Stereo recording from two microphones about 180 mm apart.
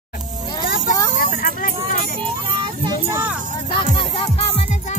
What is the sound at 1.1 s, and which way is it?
Vehicle, 50° left (ahead or behind).